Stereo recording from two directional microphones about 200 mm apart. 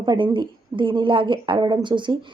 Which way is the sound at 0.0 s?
25° right (ahead or behind).